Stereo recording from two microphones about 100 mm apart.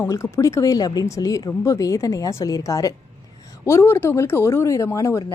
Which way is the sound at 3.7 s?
25° left (ahead or behind).